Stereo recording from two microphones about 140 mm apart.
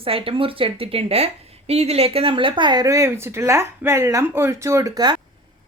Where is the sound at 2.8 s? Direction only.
20° right (ahead or behind).